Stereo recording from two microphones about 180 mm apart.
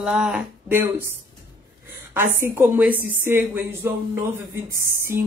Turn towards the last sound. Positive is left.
turn(degrees=-55)  # may be behind; listen again after turning